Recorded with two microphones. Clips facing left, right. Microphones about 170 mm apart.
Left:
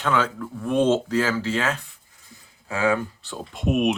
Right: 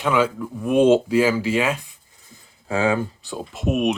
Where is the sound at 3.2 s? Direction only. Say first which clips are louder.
Right 4 dB; 15° right (ahead or behind).